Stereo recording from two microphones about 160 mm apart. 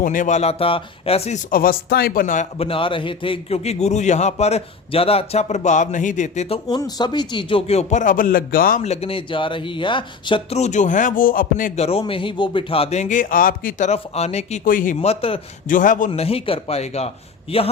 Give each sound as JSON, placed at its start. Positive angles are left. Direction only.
{"t": 0.0, "sound": "a man's voice", "side_deg": 55}
{"t": 1.5, "sound": "a man's voice", "side_deg": 65}
{"t": 2.6, "sound": "a man's voice", "side_deg": 35}
{"t": 6.7, "sound": "a man's voice", "side_deg": 25}
{"t": 8.8, "sound": "a man's voice", "side_deg": 40}
{"t": 10.6, "sound": "a man's voice", "side_deg": 50}
{"t": 11.9, "sound": "a man's voice", "side_deg": 35}
{"t": 14.6, "sound": "a man's voice", "side_deg": 60}
{"t": 15.0, "sound": "a man's voice", "side_deg": 35}
{"t": 15.7, "sound": "a man's voice", "side_deg": 55}
{"t": 16.1, "sound": "a man's voice", "side_deg": 35}